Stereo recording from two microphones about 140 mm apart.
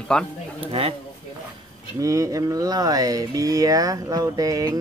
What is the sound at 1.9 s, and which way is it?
Speech, 25° right (ahead or behind).